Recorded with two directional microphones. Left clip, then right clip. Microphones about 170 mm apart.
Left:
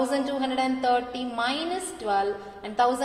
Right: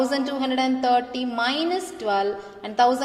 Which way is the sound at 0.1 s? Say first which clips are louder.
Right 2 dB; 30° right (ahead or behind).